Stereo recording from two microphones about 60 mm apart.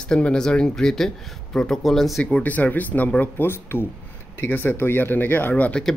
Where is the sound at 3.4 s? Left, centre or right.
Left.